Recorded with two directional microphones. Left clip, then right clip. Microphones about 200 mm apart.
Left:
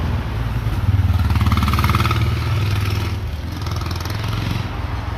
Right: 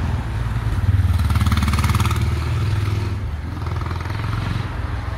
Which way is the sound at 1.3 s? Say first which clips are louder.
Left 3 dB; 40° right (ahead or behind).